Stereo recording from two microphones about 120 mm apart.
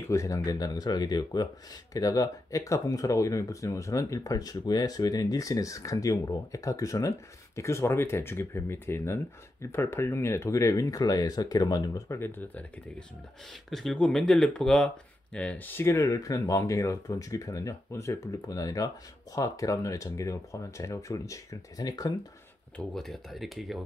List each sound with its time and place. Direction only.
0.1 s speech: 25° left (ahead or behind)
13.7 s speech: centre (ahead or behind); by 22.1 s 30° left (ahead or behind)
22.8 s speech: 5° left (ahead or behind)